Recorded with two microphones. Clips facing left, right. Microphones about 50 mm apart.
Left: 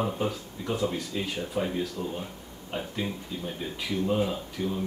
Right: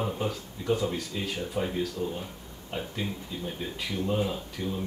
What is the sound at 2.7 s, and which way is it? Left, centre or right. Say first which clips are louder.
Speech: left 1 dB; centre.